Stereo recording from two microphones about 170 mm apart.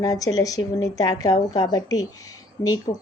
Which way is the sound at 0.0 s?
20° left (ahead or behind).